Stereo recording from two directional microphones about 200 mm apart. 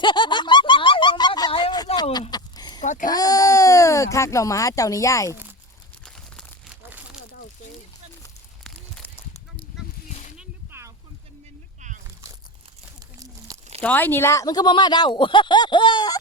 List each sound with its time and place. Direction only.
0.0 s snicker: 20° left (ahead or behind)
2.8 s speech: 40° left (ahead or behind)
3.1 s speech: 20° left (ahead or behind)
6.3 s crumpling: 5° right (ahead or behind)
8.6 s a sound: 10° left (ahead or behind)
10.3 s a sound: 10° right (ahead or behind)
13.5 s crumpling: 20° right (ahead or behind)
13.8 s speech: 10° left (ahead or behind)